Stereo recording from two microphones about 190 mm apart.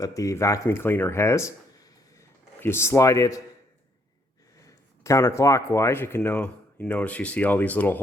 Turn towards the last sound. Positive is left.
turn(degrees=10)  # may be behind; listen again after turning